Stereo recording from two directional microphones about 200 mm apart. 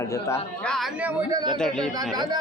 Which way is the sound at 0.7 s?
5° right (ahead or behind).